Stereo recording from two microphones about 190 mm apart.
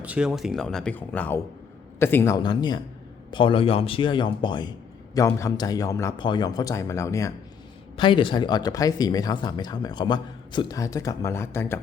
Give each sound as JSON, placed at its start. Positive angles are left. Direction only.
{"t": 0.0, "sound": "a man's voice", "side_deg": -5}
{"t": 2.4, "sound": "a man's voice", "side_deg": 25}
{"t": 7.9, "sound": "speech", "side_deg": 25}